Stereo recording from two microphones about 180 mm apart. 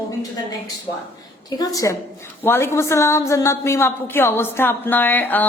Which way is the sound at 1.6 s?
20° left (ahead or behind).